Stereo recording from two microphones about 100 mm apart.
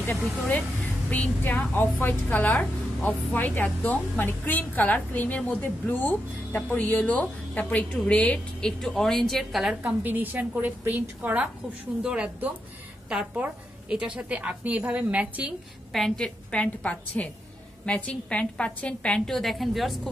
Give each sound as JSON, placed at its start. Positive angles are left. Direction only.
{"t": 0.5, "sound": "a woman's voice", "side_deg": 15}
{"t": 10.0, "sound": "a woman's voice", "side_deg": -20}
{"t": 15.9, "sound": "a woman's voice", "side_deg": 5}